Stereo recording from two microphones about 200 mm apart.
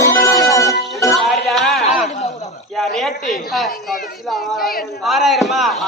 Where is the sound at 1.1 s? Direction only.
Centre (ahead or behind).